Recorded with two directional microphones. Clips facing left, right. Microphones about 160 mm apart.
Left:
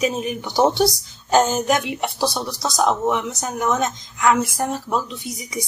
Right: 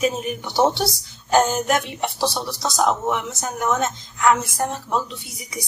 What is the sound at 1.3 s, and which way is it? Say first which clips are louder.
Speech: left 1 dB; 15° left (ahead or behind).